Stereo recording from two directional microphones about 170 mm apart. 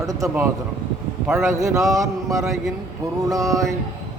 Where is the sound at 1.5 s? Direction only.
20° right (ahead or behind).